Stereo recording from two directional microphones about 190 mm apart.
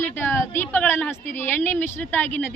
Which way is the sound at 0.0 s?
10° left (ahead or behind).